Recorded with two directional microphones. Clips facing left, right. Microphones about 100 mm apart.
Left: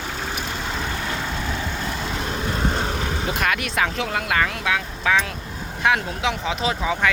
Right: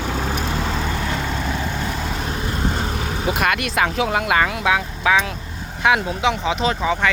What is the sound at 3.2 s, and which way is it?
Vehicle, 15° right (ahead or behind).